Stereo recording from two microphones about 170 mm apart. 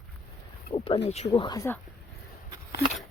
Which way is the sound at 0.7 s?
35° left (ahead or behind).